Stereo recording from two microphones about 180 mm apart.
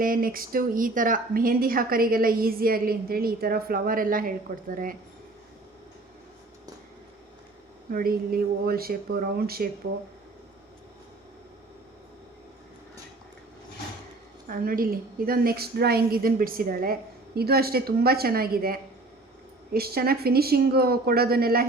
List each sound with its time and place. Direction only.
0.0 s speech: 50° right (ahead or behind)
7.9 s a woman's voice: 50° right (ahead or behind)
14.4 s a woman's voice: 50° right (ahead or behind)